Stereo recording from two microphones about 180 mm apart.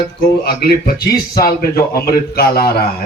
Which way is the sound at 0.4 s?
60° left (ahead or behind).